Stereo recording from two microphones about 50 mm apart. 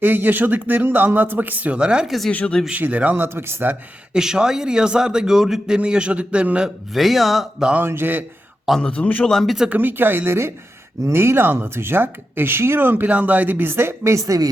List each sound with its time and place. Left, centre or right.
0.0 s speech: right
1.8 s speech: centre
2.0 s speech: centre
2.3 s speech: left
2.7 s speech: right
3.2 s speech: right
4.1 s a man's voice: centre
6.9 s speech: centre
7.9 s speech: right
8.8 s speech: left
9.2 s speech: centre
9.6 s speech: right
13.1 s speech: right